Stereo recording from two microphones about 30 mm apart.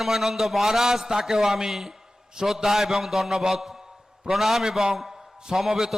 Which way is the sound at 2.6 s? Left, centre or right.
Centre.